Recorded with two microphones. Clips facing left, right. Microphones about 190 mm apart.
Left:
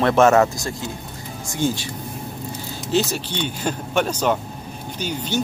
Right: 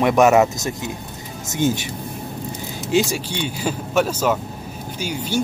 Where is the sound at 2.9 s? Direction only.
10° right (ahead or behind).